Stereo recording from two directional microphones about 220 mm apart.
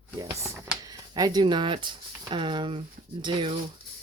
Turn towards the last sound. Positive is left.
turn(degrees=-20)  # may be behind; listen again after turning